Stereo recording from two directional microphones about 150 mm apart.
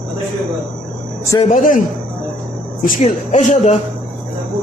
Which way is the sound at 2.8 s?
60° left (ahead or behind).